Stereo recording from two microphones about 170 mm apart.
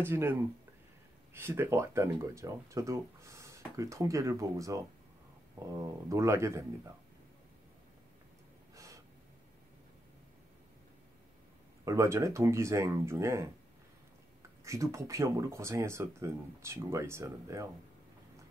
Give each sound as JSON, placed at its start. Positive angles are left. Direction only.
{"t": 0.0, "sound": "speech", "side_deg": -15}
{"t": 8.7, "sound": "gasp", "side_deg": -20}
{"t": 11.8, "sound": "speech", "side_deg": -20}
{"t": 14.6, "sound": "speech", "side_deg": -15}